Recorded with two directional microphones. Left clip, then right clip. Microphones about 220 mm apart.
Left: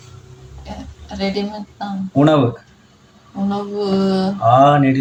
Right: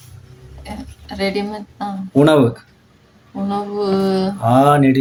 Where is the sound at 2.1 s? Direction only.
60° right (ahead or behind).